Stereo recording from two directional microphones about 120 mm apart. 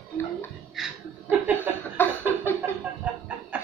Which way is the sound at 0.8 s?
5° right (ahead or behind).